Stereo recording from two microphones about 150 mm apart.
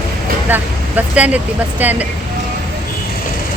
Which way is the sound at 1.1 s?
10° right (ahead or behind).